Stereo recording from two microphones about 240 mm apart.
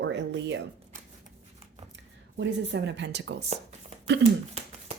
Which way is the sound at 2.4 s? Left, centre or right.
Right.